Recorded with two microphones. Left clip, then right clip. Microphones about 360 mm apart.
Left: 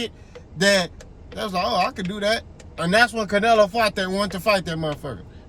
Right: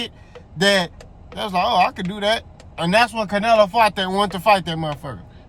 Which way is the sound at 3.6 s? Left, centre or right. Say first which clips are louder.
Right 4 dB; centre.